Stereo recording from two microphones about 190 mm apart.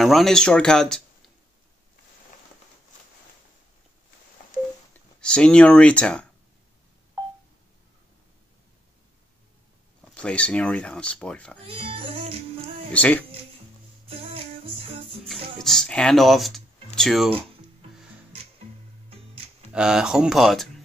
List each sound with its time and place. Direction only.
0.0 s speech: centre (ahead or behind)
4.9 s speech: 5° left (ahead or behind)
10.1 s speech: 5° left (ahead or behind)
11.6 s music: 30° right (ahead or behind)
12.9 s speech: 10° left (ahead or behind)
14.0 s music: 30° right (ahead or behind)
15.6 s speech: 5° left (ahead or behind)
19.7 s speech: 5° right (ahead or behind)